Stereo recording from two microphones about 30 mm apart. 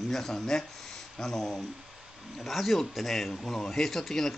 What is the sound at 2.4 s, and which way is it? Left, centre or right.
Speech, centre.